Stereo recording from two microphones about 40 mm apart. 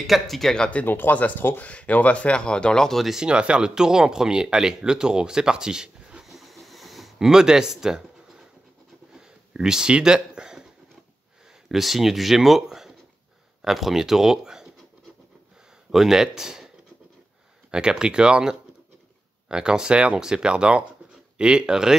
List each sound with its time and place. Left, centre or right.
0.0 s speech: centre
0.8 s speech: left
1.1 s speech: left
3.3 s speech: right
6.2 s hiss: centre
7.2 s speech: centre
9.1 s a sound: centre
9.9 s speech: right
11.7 s speech: centre
15.9 s speech: centre